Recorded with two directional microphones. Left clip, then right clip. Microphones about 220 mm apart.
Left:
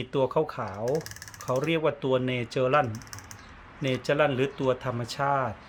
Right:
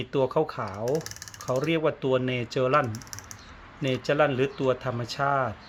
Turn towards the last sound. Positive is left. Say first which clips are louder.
# right 1 dB
turn(degrees=-5)  # may be behind; listen again after turning